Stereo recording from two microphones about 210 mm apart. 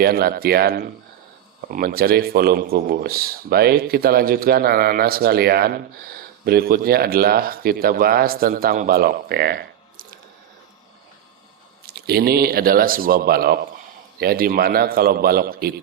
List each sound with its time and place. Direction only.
0.0 s speech: 45° right (ahead or behind)
11.9 s speech: 50° right (ahead or behind)